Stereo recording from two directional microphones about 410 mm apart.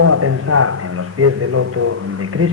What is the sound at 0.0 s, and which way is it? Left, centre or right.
A man's voice, right.